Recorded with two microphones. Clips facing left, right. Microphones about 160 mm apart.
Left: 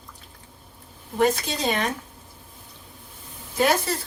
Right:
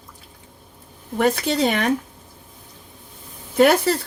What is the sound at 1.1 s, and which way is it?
Speech, 60° right (ahead or behind).